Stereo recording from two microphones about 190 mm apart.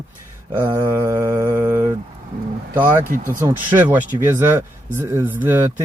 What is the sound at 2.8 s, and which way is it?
Speech, 45° right (ahead or behind).